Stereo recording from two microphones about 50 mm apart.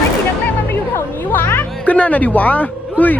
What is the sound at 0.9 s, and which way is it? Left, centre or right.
Music, left.